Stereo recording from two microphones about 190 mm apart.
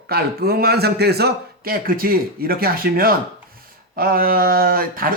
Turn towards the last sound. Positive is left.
turn(degrees=-50)  # may be behind; listen again after turning